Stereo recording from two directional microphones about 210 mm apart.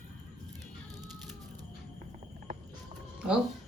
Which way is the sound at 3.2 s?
5° right (ahead or behind).